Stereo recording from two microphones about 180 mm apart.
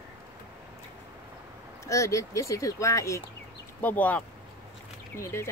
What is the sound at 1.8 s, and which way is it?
Speech, 15° left (ahead or behind).